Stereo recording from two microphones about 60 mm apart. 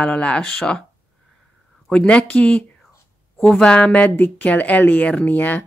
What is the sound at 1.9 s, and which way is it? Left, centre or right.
Speech, centre.